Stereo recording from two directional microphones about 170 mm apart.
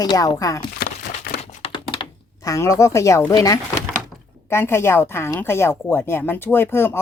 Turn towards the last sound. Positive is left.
turn(degrees=15)  # may be behind; listen again after turning